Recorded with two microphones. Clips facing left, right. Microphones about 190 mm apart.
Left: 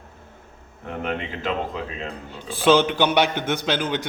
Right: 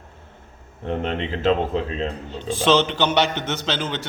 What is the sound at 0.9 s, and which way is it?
Speech, 30° right (ahead or behind).